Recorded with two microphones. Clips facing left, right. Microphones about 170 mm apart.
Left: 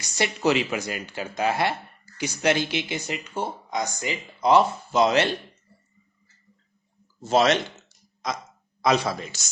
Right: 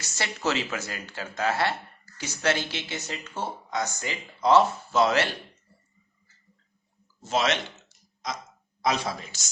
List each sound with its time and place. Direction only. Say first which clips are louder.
0.0 s speech: left 6 dB; 15° left (ahead or behind)
7.3 s speech: left 6 dB; 35° left (ahead or behind)
8.8 s speech: left 5 dB; 70° left (ahead or behind)